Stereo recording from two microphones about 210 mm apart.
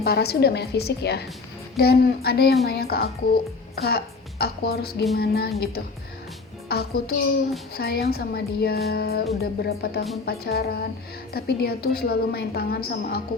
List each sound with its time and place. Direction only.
0.0 s a woman's voice: 50° left (ahead or behind)